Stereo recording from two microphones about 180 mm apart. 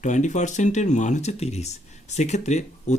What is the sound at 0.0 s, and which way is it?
Speech, 40° left (ahead or behind).